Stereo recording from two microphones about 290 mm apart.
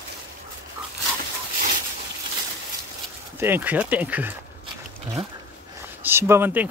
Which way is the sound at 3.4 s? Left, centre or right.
Centre.